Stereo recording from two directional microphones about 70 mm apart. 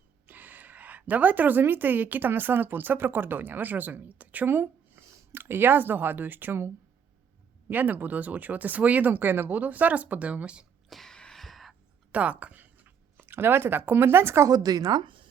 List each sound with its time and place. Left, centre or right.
0.3 s a woman's voice: right
7.7 s speech: right
10.8 s a sound: centre
12.1 s a sound: right
13.2 s speech: right
14.5 s a woman's voice: right